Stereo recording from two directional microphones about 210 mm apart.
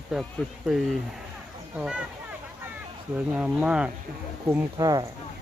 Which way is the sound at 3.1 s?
5° right (ahead or behind).